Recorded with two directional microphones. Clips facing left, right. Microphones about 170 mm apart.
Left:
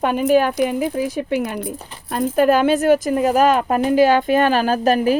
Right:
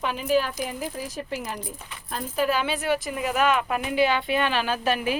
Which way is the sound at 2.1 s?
65° left (ahead or behind).